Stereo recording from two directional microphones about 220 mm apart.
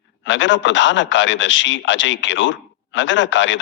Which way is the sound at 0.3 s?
55° left (ahead or behind).